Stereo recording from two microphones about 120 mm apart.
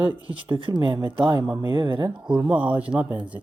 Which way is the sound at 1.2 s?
20° right (ahead or behind).